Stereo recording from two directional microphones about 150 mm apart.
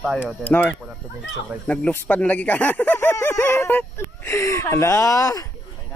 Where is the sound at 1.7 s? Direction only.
10° left (ahead or behind).